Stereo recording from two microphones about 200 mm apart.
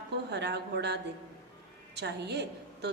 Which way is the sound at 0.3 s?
55° right (ahead or behind).